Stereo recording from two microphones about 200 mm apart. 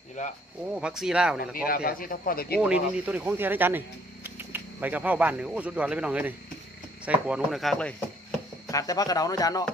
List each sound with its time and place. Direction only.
0.2 s speech: 35° left (ahead or behind)
0.7 s speech: 5° right (ahead or behind)
1.4 s speech: 45° left (ahead or behind)
2.6 s speech: 5° right (ahead or behind)
8.6 s speech: 15° left (ahead or behind)